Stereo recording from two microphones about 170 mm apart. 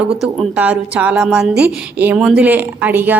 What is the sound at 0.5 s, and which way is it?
A woman's voice, 10° right (ahead or behind).